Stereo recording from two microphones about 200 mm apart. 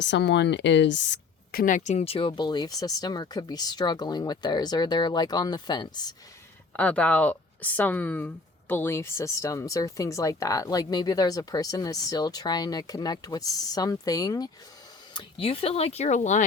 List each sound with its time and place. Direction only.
0.0 s speech: 60° left (ahead or behind)
1.6 s speech: 40° left (ahead or behind); by 6.1 s 20° left (ahead or behind)
6.7 s speech: 5° left (ahead or behind); by 16.4 s 35° left (ahead or behind)